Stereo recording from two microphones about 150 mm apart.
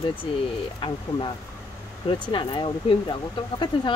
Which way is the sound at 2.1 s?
35° left (ahead or behind).